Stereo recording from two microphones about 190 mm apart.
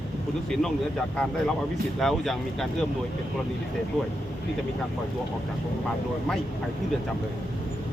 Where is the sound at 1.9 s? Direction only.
Centre (ahead or behind).